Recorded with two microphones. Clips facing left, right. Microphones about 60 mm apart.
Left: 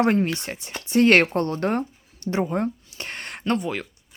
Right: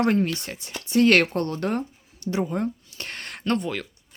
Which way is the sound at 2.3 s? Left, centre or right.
Left.